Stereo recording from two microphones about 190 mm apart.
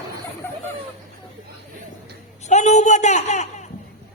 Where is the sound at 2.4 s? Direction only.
35° left (ahead or behind).